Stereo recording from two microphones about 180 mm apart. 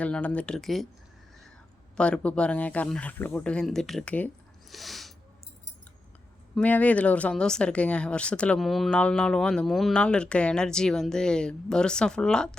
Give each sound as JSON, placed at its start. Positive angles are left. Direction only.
{"t": 0.0, "sound": "speech", "side_deg": 10}
{"t": 2.0, "sound": "speech", "side_deg": 5}
{"t": 4.7, "sound": "a sound", "side_deg": 0}
{"t": 6.6, "sound": "speech", "side_deg": 10}